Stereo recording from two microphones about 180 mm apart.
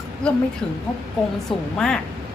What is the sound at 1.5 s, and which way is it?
Speech, 5° left (ahead or behind).